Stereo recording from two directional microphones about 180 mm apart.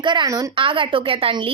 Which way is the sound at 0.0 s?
25° right (ahead or behind).